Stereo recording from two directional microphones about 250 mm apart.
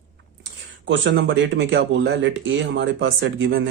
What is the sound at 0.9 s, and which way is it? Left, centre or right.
Speech, right.